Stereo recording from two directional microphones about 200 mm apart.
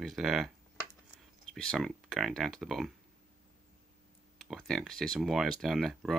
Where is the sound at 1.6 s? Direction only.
Centre (ahead or behind).